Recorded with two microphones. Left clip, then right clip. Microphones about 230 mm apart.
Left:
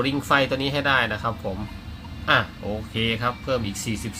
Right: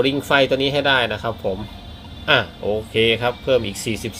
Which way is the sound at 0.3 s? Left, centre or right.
Centre.